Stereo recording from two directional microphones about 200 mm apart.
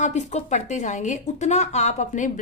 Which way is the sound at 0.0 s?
35° left (ahead or behind).